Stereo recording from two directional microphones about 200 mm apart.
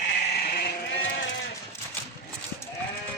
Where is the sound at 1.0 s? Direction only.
60° left (ahead or behind).